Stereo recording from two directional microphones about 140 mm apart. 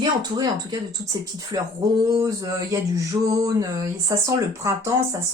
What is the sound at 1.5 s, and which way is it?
Speech, 30° right (ahead or behind).